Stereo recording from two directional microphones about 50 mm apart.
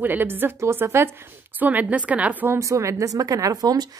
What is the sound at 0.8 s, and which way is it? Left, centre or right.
Speech, right.